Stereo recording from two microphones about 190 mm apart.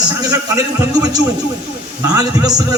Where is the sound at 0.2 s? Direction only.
20° right (ahead or behind).